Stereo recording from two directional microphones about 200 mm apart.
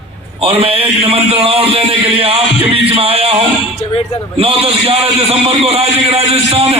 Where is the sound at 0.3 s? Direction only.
30° right (ahead or behind).